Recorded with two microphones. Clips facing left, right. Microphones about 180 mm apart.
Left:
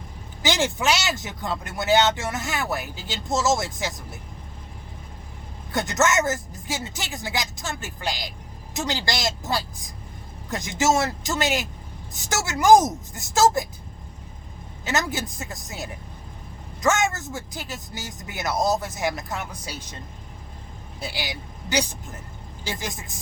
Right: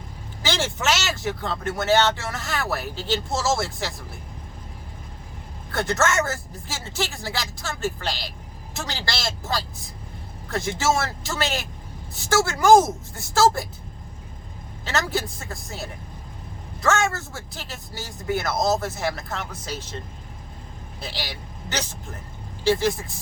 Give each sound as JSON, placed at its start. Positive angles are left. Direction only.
{"t": 0.4, "sound": "speech", "side_deg": 15}
{"t": 5.7, "sound": "speech", "side_deg": 15}
{"t": 14.8, "sound": "speech", "side_deg": 15}
{"t": 21.0, "sound": "a man's voice", "side_deg": 10}